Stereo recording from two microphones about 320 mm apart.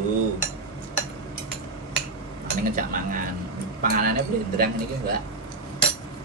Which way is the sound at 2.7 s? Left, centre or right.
Right.